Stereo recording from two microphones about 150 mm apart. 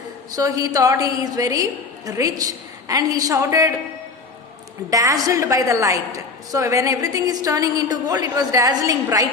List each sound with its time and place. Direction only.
0.3 s a woman's voice: 25° right (ahead or behind)
4.9 s a woman's voice: 20° right (ahead or behind)